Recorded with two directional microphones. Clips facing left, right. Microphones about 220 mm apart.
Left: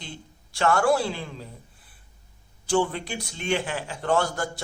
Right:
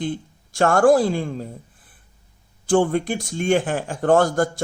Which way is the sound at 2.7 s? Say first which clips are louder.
Right 6 dB; 50° right (ahead or behind).